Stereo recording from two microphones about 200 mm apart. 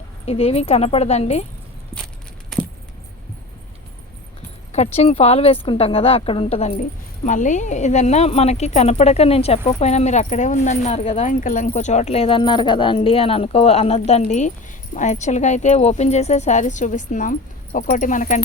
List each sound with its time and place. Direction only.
0.3 s speech: 30° left (ahead or behind)
4.7 s a woman's voice: 30° left (ahead or behind)